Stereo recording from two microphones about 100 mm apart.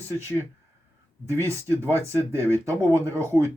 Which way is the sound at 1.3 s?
30° right (ahead or behind).